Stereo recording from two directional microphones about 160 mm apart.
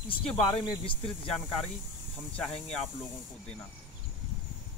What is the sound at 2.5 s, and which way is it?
Speech, 40° left (ahead or behind).